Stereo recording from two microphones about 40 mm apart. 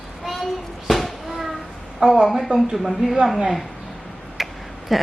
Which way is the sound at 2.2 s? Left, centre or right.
Centre.